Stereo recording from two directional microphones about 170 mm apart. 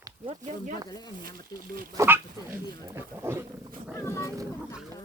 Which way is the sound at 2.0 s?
15° right (ahead or behind).